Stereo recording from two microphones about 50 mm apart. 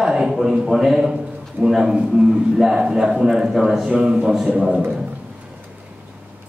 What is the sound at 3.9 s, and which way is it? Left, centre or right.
Speech, right.